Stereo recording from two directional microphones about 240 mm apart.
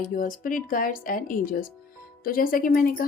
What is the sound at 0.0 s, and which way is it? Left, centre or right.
Speech, left.